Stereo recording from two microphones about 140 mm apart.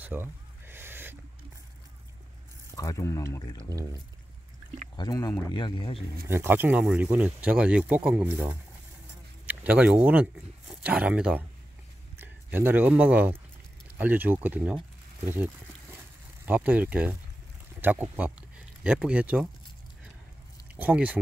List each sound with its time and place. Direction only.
0.0 s a sound: 15° right (ahead or behind)
2.7 s speech: 25° left (ahead or behind)
4.9 s speech: 25° left (ahead or behind)
6.2 s speech: 15° right (ahead or behind)
20.7 s speech: 10° right (ahead or behind)